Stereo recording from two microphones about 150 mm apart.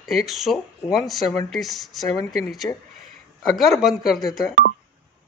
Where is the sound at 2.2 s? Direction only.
20° left (ahead or behind).